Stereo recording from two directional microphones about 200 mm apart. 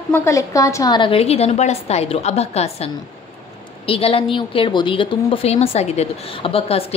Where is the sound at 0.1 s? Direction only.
15° left (ahead or behind).